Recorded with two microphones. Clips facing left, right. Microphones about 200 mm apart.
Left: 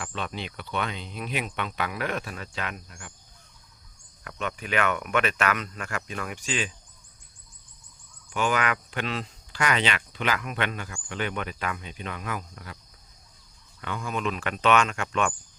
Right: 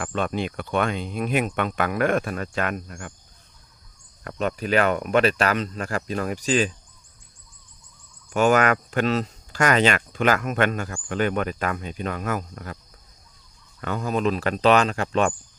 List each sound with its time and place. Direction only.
0.0 s speech: 50° right (ahead or behind)
4.2 s speech: 40° right (ahead or behind)
8.3 s speech: 45° right (ahead or behind)
13.8 s speech: 40° right (ahead or behind)